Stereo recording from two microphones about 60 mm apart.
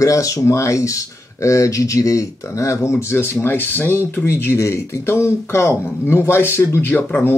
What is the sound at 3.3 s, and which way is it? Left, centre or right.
Speech, left.